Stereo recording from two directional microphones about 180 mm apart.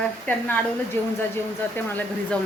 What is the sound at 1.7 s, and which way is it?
Speech, 10° left (ahead or behind).